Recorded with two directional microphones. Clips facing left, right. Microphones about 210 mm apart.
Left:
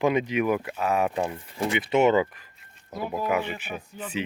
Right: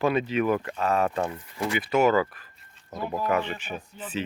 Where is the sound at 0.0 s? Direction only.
15° left (ahead or behind).